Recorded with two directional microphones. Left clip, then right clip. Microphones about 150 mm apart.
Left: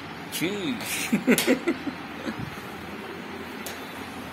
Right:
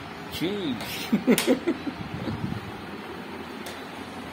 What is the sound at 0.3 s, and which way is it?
Speech, 20° right (ahead or behind).